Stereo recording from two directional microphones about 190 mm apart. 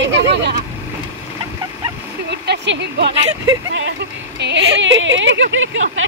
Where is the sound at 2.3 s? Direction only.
65° right (ahead or behind); by 6.0 s 85° right.